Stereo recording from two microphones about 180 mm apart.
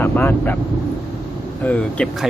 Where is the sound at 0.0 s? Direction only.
10° left (ahead or behind).